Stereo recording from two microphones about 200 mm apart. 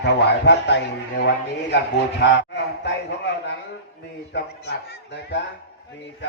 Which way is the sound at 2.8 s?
60° left (ahead or behind).